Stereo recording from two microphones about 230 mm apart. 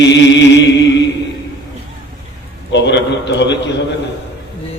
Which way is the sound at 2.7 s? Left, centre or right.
Left.